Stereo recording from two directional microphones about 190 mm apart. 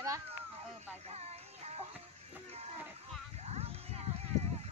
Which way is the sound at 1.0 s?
35° right (ahead or behind).